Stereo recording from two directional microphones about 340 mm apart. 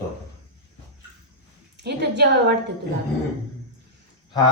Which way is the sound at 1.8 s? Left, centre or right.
Right.